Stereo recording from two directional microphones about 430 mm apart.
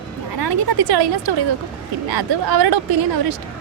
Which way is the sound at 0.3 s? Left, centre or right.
Right.